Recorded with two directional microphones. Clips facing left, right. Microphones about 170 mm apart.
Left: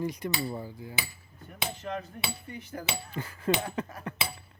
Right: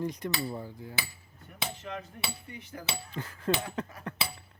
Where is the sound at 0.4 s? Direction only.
5° left (ahead or behind).